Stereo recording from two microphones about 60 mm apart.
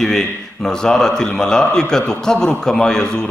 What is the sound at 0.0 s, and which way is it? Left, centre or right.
A man's voice, centre.